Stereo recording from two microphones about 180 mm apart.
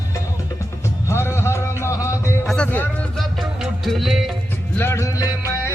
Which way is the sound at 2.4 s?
5° left (ahead or behind).